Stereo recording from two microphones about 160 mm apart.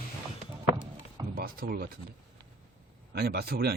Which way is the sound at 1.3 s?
65° right (ahead or behind).